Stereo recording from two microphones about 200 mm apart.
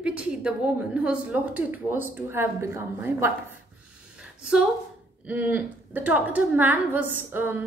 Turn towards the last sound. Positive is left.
turn(degrees=-10)  # may be behind; listen again after turning